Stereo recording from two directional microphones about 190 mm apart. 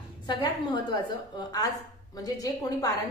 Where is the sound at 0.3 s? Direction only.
25° left (ahead or behind).